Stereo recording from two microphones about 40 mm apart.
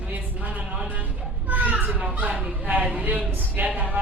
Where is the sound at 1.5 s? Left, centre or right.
Right.